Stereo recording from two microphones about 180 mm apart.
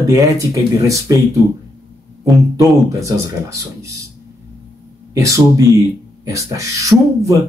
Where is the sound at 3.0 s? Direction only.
15° right (ahead or behind).